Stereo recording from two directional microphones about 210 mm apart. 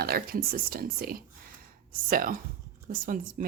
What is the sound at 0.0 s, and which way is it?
Speech, 45° right (ahead or behind).